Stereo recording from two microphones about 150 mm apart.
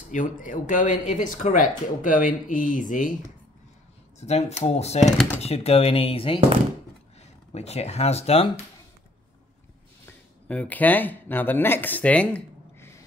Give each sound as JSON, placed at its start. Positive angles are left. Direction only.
{"t": 0.1, "sound": "speech", "side_deg": 60}
{"t": 4.2, "sound": "speech", "side_deg": 45}
{"t": 7.5, "sound": "speech", "side_deg": 45}
{"t": 10.5, "sound": "speech", "side_deg": 10}